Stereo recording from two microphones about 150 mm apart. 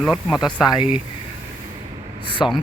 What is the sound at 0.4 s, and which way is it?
Speech, 30° left (ahead or behind).